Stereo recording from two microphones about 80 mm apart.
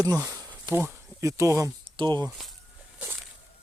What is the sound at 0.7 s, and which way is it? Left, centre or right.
Speech, right.